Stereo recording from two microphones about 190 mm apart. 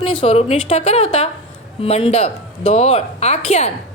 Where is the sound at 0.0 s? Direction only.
30° left (ahead or behind).